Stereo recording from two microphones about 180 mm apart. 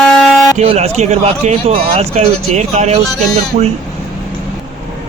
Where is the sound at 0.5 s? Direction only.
35° right (ahead or behind).